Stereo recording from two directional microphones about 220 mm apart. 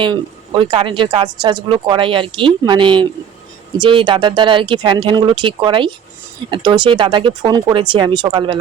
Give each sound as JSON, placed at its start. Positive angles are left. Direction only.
{"t": 0.0, "sound": "speech", "side_deg": -20}